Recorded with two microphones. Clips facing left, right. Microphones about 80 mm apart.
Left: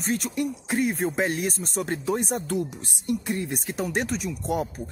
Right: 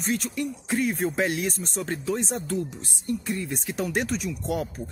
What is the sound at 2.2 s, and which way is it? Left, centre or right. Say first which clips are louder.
Speech: left 2 dB; left.